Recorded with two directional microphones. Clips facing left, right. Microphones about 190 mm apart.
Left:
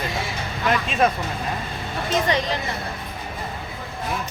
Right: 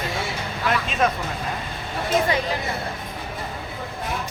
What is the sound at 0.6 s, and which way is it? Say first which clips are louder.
Speech: left 2 dB; centre (ahead or behind).